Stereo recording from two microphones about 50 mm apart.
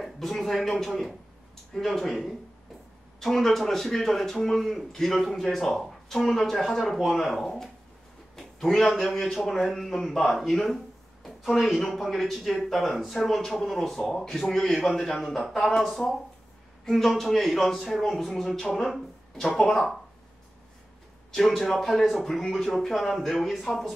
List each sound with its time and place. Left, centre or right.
0.0 s a man's voice: centre
21.3 s speech: centre